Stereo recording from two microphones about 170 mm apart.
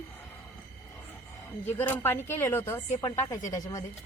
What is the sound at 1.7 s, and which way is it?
Speech, 10° left (ahead or behind).